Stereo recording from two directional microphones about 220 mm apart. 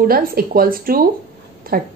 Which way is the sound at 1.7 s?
40° right (ahead or behind).